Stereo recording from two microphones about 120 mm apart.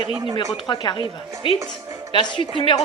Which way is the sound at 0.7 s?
40° left (ahead or behind).